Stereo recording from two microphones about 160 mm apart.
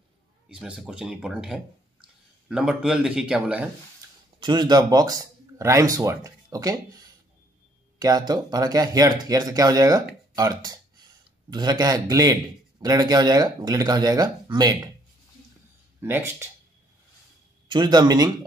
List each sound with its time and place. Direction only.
0.5 s speech: 5° right (ahead or behind)
4.4 s speech: 25° right (ahead or behind)
8.0 s speech: 25° right (ahead or behind)
16.0 s speech: 15° right (ahead or behind)
17.6 s speech: 25° right (ahead or behind)